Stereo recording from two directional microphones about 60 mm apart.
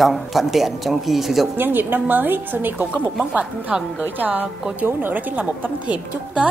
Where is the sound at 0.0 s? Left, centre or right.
Centre.